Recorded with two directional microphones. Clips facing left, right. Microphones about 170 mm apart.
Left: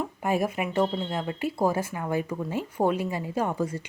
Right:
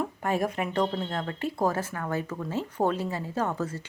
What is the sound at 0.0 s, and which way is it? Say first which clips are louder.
Speech: left 1 dB; 10° left (ahead or behind).